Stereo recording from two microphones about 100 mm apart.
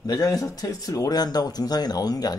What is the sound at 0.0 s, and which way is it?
Speech, 35° left (ahead or behind).